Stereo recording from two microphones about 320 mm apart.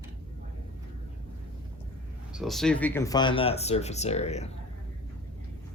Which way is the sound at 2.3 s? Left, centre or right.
Centre.